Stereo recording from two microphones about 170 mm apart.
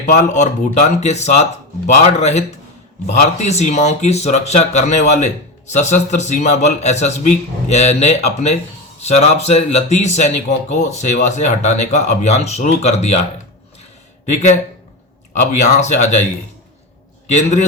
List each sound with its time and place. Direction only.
0.1 s speech: 45° left (ahead or behind)
14.3 s speech: 45° left (ahead or behind)
15.6 s speech: 45° left (ahead or behind)
17.2 s speech: 45° left (ahead or behind)